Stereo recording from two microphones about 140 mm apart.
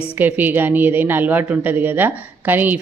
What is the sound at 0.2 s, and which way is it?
A woman's voice, 15° right (ahead or behind).